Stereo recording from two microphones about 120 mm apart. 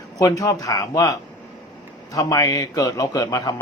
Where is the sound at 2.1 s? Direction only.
30° left (ahead or behind).